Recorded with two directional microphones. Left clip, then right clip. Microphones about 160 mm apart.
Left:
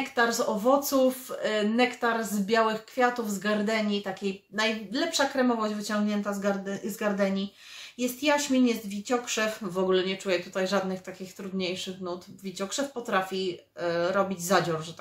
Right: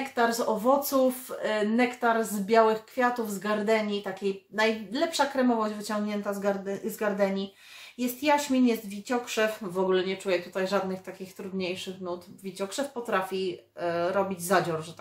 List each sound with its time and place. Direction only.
0.1 s speech: 10° right (ahead or behind)